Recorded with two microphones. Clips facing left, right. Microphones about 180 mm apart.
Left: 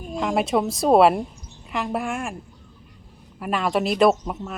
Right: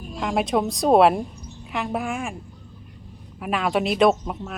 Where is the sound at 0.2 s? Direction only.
Centre (ahead or behind).